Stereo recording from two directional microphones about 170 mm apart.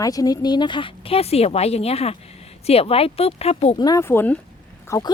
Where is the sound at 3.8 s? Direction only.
20° left (ahead or behind).